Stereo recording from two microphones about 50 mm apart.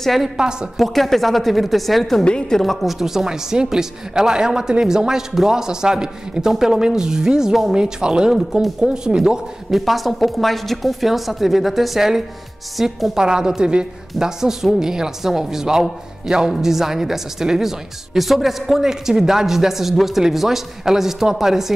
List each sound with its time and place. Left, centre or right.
0.0 s a woman's voice: centre
0.4 s a woman's voice: centre
0.7 s a woman's voice: centre
2.2 s a woman's voice: centre
2.6 s a woman's voice: centre
8.4 s a woman's voice: centre
9.7 s a woman's voice: centre